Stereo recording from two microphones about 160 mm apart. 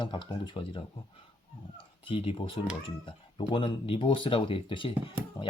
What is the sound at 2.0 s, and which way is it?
Speech, 35° left (ahead or behind).